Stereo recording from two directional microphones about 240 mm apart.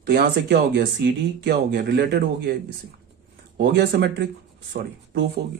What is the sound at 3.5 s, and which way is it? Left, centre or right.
A man's voice, right.